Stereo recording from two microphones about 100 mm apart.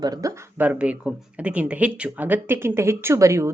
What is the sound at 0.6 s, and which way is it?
Speech, 15° right (ahead or behind).